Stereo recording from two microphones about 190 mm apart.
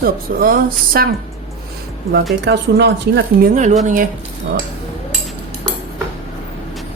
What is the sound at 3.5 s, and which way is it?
Speech, 40° right (ahead or behind).